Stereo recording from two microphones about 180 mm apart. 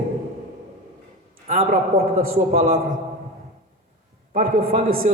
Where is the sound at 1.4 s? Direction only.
45° right (ahead or behind).